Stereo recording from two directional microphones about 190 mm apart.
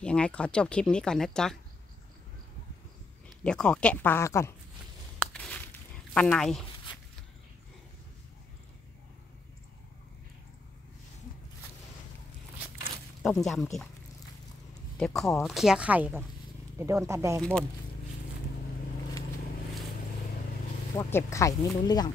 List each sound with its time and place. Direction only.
0.0 s speech: 5° left (ahead or behind)
3.4 s speech: 5° left (ahead or behind)
5.3 s a sound: 5° left (ahead or behind)
6.1 s speech: 5° left (ahead or behind)
13.2 s speech: centre (ahead or behind)
15.0 s speech: centre (ahead or behind); by 17.4 s 15° right (ahead or behind)
17.4 s speech: 5° left (ahead or behind)
20.9 s speech: 15° left (ahead or behind)